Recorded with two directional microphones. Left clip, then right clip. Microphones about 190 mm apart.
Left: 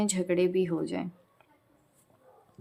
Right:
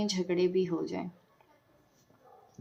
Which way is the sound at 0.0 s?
40° left (ahead or behind).